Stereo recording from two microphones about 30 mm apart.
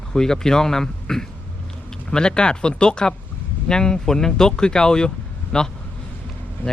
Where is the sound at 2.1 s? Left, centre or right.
Left.